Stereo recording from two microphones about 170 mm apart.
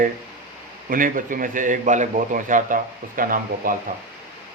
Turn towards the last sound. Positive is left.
turn(degrees=-55)  # may be behind; listen again after turning